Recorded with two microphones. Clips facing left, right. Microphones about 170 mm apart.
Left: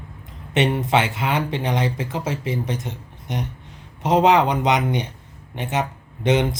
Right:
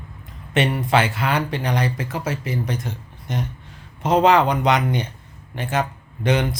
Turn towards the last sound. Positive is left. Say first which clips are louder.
# left 1 dB
turn(degrees=20)  # may be behind; listen again after turning